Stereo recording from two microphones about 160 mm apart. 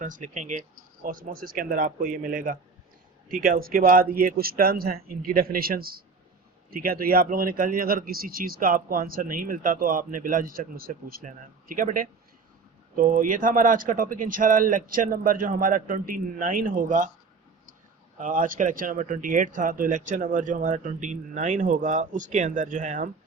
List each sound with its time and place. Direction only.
0.0 s speech: 50° right (ahead or behind)
1.0 s speech: 60° right (ahead or behind)
18.2 s speech: 60° right (ahead or behind)